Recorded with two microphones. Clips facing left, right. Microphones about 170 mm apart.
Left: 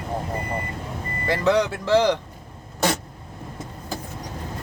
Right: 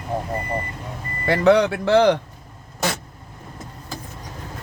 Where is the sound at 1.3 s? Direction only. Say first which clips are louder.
Right 5 dB; 65° right (ahead or behind).